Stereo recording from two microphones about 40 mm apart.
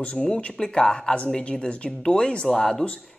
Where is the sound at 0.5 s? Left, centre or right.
Centre.